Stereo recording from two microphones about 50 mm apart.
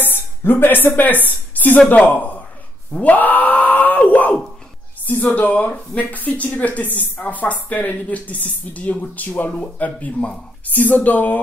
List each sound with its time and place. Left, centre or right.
0.0 s a woman's voice: left
2.9 s wail: left
5.0 s a woman's voice: left